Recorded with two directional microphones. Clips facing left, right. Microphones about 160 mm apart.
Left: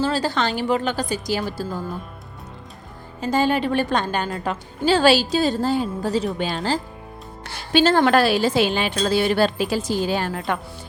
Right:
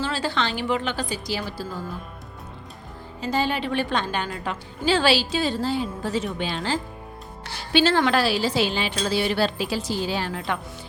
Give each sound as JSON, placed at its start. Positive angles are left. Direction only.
{"t": 0.0, "sound": "speech", "side_deg": 40}
{"t": 3.2, "sound": "a woman's voice", "side_deg": 45}